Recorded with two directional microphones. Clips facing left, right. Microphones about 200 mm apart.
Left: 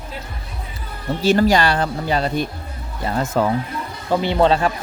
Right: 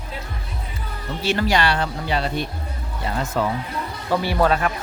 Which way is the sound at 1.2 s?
40° left (ahead or behind).